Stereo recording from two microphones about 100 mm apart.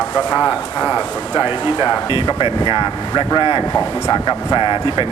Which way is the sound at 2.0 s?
55° left (ahead or behind).